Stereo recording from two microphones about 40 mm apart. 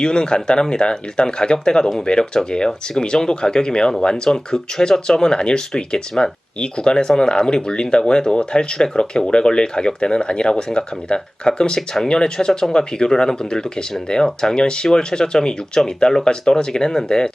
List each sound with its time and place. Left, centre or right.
0.0 s speech: left